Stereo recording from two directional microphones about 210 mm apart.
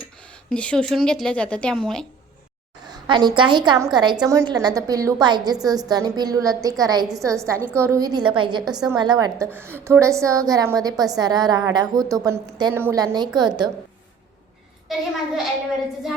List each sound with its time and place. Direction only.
0.5 s a woman's voice: 5° left (ahead or behind)
2.8 s a woman's voice: 20° right (ahead or behind)